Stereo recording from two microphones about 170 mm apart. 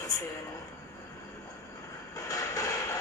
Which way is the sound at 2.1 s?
20° left (ahead or behind).